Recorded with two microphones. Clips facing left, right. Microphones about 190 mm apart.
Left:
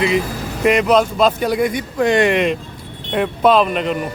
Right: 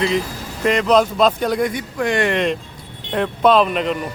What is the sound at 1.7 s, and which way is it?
Speech, 20° left (ahead or behind).